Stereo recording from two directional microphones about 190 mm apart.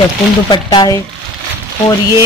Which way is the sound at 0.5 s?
20° left (ahead or behind).